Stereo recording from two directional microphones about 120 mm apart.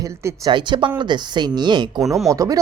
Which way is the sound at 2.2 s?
30° right (ahead or behind).